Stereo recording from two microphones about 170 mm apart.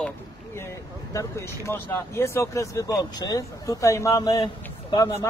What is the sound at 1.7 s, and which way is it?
Speech, 15° left (ahead or behind).